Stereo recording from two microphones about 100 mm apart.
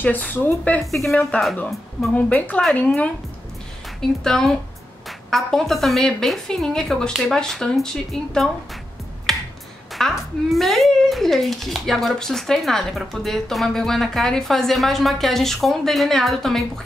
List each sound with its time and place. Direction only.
0.0 s speech: 15° left (ahead or behind)
0.9 s speech: centre (ahead or behind)
2.1 s speech: 15° left (ahead or behind)
4.2 s speech: 5° left (ahead or behind)
9.3 s finger snapping: 5° left (ahead or behind)
9.9 s speech: centre (ahead or behind)